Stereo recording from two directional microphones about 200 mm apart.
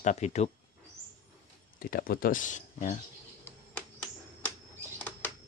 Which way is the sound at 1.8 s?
45° left (ahead or behind).